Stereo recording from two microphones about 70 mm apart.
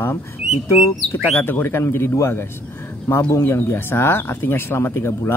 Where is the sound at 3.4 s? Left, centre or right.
Left.